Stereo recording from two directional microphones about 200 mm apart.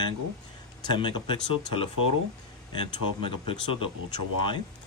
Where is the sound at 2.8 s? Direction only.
25° left (ahead or behind).